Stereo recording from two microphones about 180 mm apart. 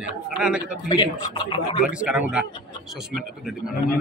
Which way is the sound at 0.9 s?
25° left (ahead or behind).